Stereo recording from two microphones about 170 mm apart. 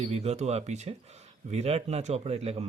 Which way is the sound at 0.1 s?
40° right (ahead or behind).